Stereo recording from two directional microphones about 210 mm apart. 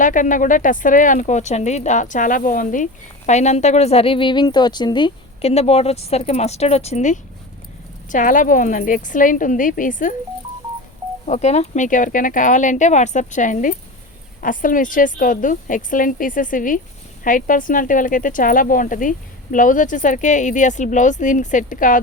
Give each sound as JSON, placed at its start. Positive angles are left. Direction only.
{"t": 0.0, "sound": "speech", "side_deg": 40}
{"t": 11.3, "sound": "speech", "side_deg": 35}